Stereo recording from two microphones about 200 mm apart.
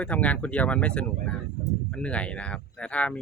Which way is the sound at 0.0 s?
5° left (ahead or behind).